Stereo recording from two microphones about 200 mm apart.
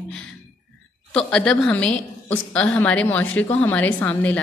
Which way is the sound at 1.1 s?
5° left (ahead or behind).